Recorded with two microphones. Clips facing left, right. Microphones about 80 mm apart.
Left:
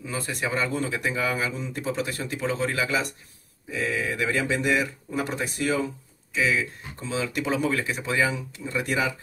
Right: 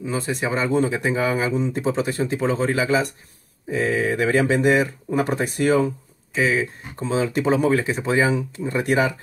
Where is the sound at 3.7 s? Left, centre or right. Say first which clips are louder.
Right 6 dB; right.